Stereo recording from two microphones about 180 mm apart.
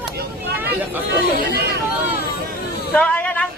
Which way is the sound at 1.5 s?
65° right (ahead or behind).